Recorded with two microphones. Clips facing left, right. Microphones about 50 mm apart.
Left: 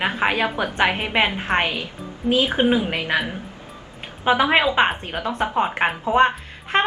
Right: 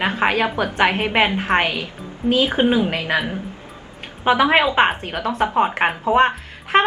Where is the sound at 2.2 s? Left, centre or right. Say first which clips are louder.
Right 1 dB; right.